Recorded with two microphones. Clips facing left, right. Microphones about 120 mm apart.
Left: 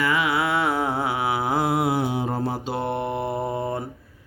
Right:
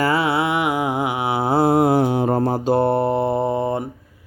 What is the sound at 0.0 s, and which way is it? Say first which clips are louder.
Mantra: right 4 dB; 35° right (ahead or behind).